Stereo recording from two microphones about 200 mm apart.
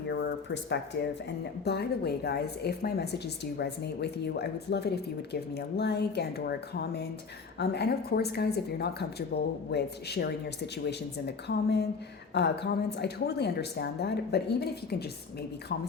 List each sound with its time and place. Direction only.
0.1 s speech: 60° left (ahead or behind)